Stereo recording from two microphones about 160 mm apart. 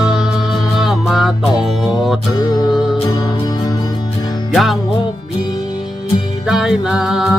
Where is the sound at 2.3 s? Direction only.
25° left (ahead or behind).